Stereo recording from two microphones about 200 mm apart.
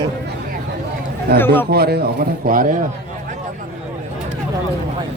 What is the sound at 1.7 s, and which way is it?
Speech, 50° right (ahead or behind).